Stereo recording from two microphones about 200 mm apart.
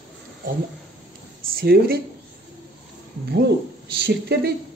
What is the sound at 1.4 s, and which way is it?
Speech, 45° right (ahead or behind).